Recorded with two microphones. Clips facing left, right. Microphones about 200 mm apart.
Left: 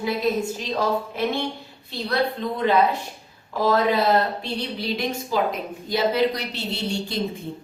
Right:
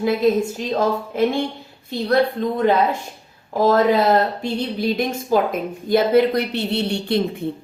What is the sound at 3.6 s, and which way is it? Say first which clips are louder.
A woman's voice: right 5 dB; 45° right (ahead or behind).